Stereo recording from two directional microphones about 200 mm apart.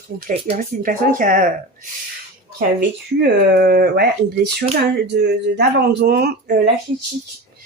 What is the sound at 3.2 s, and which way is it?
Speech, 50° right (ahead or behind).